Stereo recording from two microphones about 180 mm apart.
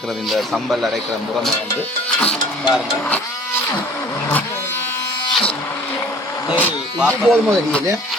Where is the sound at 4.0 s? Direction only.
15° left (ahead or behind).